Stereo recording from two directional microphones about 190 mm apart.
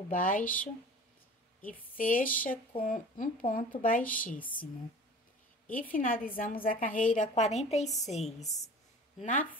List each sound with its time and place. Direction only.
0.1 s a woman's voice: 45° left (ahead or behind)
1.7 s a woman's voice: 45° left (ahead or behind)
5.7 s a woman's voice: 45° left (ahead or behind)
9.2 s a woman's voice: 40° left (ahead or behind)